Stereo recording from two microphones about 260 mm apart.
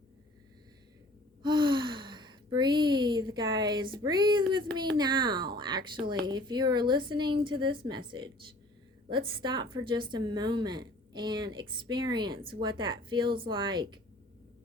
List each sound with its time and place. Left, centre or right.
1.4 s gasp: centre
4.9 s a woman's voice: centre